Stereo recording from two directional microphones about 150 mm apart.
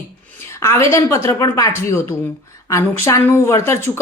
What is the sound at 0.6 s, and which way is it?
Speech, 20° left (ahead or behind).